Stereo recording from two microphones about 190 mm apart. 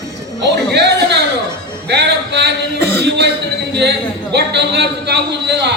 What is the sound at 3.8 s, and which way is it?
Speech, 60° right (ahead or behind).